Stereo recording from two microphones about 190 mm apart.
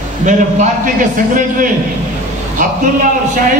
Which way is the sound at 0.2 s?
40° right (ahead or behind).